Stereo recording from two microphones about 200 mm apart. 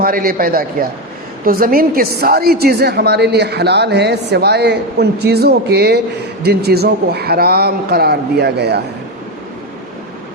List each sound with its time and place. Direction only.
0.0 s a woman's voice: 45° right (ahead or behind)